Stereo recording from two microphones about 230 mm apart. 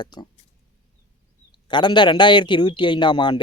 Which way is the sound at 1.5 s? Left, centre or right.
Centre.